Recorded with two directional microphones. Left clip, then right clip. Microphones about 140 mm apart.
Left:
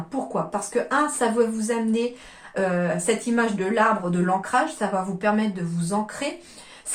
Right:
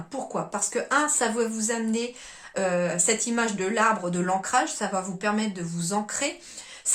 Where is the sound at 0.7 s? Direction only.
35° right (ahead or behind).